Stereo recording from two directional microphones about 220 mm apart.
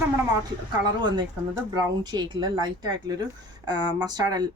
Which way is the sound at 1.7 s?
20° right (ahead or behind).